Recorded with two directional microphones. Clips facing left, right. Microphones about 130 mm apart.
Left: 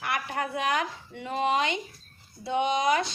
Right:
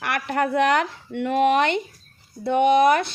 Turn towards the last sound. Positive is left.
turn(degrees=-60)  # may be behind; listen again after turning